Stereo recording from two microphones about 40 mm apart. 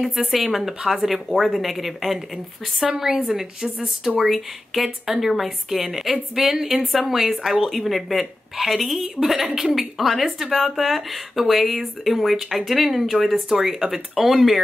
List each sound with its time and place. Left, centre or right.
0.2 s speech: centre
3.0 s a woman's voice: centre
4.2 s a woman's voice: centre